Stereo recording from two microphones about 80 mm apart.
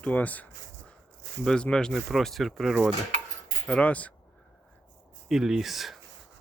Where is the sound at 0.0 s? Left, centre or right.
Centre.